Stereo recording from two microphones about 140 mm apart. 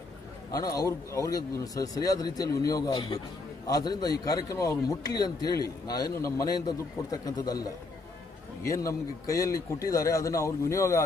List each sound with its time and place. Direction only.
0.5 s a man's voice: 25° left (ahead or behind)